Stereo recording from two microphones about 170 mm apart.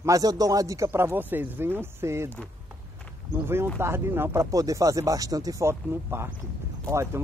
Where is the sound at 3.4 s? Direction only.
15° right (ahead or behind).